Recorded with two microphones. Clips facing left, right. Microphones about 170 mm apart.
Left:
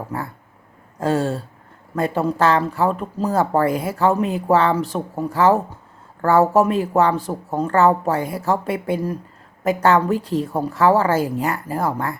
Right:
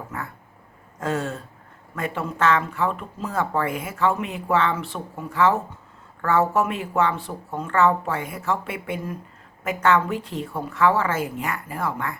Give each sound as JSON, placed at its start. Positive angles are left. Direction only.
{"t": 0.1, "sound": "speech", "side_deg": 35}